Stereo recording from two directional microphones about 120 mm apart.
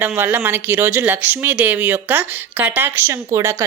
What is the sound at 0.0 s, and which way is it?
Speech, 15° right (ahead or behind).